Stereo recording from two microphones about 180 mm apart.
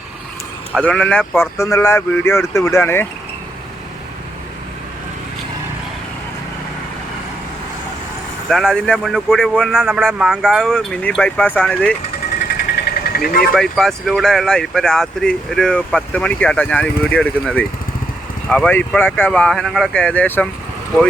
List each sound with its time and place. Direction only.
0.8 s speech: 10° left (ahead or behind)
8.4 s speech: centre (ahead or behind)
12.8 s vehicle: 55° left (ahead or behind)
13.6 s speech: centre (ahead or behind)